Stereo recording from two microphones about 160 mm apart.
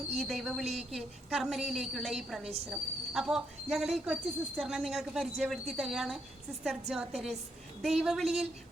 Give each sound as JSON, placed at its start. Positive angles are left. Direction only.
{"t": 0.2, "sound": "speech", "side_deg": 0}